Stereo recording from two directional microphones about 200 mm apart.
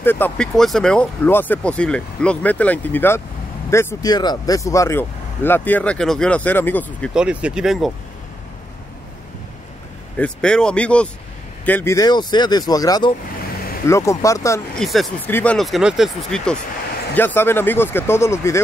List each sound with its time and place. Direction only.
0.0 s speech: 10° left (ahead or behind)
7.2 s speech: 5° right (ahead or behind)
10.1 s speech: 5° left (ahead or behind)
14.8 s speech: centre (ahead or behind)